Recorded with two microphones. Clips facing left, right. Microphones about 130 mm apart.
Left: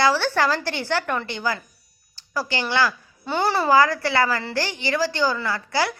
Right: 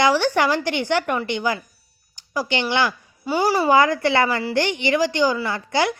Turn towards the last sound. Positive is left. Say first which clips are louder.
# right 2 dB
turn(degrees=-20)  # may be behind; listen again after turning